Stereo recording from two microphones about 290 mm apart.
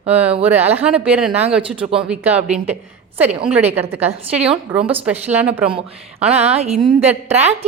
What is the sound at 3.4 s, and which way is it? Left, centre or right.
Speech, centre.